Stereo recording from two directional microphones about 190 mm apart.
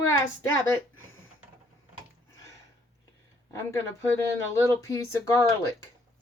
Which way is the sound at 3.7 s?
15° left (ahead or behind).